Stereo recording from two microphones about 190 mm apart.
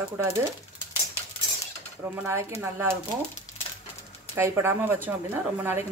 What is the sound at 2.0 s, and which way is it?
Speech, 10° right (ahead or behind).